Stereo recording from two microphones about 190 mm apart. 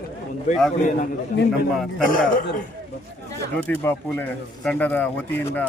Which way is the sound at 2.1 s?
45° left (ahead or behind).